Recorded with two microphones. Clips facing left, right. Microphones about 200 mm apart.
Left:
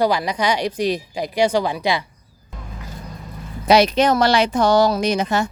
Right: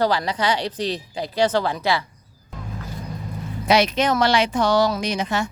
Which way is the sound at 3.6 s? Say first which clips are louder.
Left 4 dB; 35° left (ahead or behind).